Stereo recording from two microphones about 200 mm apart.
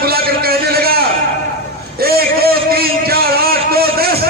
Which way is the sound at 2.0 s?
50° right (ahead or behind).